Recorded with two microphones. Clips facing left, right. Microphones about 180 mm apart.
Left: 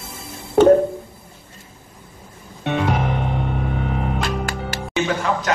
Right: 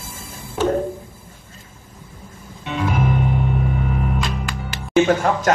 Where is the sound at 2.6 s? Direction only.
60° left (ahead or behind).